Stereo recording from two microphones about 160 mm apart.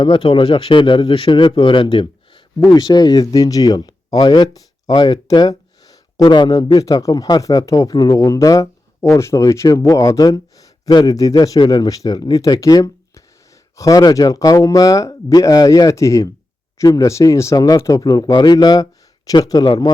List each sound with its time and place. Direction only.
0.0 s speech: 30° left (ahead or behind)